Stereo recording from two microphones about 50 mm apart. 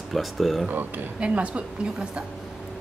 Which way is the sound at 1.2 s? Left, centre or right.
Right.